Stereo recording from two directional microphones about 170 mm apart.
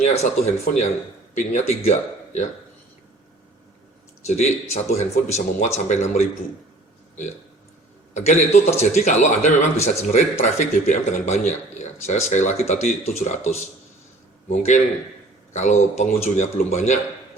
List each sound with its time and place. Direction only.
0.0 s a man's voice: 40° left (ahead or behind)
4.3 s speech: 40° left (ahead or behind)
8.1 s a man's voice: 45° left (ahead or behind)